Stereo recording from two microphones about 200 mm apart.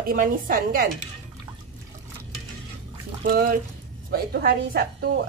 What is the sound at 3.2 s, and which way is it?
A woman's voice, 45° right (ahead or behind).